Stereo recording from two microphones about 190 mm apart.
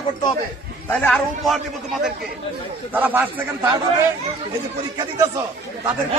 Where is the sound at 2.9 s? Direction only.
10° right (ahead or behind).